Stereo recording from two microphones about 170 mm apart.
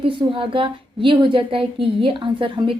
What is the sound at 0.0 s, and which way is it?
A woman's voice, 30° right (ahead or behind).